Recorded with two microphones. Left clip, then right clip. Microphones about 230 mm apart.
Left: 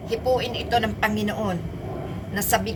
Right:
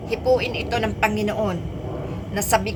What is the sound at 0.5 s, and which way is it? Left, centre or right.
Speech, left.